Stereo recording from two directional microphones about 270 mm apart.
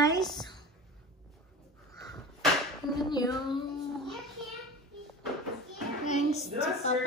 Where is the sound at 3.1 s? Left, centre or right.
Centre.